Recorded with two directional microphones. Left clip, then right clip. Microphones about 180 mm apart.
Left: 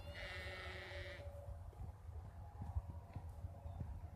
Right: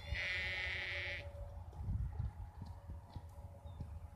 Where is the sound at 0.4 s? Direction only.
35° left (ahead or behind).